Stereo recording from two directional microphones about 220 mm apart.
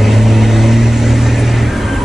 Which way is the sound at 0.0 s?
Centre (ahead or behind).